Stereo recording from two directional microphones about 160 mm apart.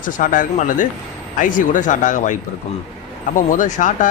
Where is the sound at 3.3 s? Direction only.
55° left (ahead or behind).